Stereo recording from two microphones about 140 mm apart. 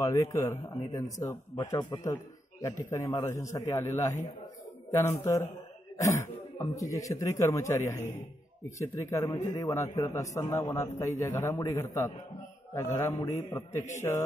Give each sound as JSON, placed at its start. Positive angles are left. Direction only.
{"t": 0.0, "sound": "a man's voice", "side_deg": 25}